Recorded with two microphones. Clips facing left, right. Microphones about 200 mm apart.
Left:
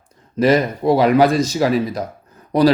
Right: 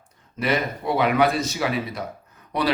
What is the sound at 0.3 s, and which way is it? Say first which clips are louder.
A man's voice: left 9 dB; 40° left (ahead or behind).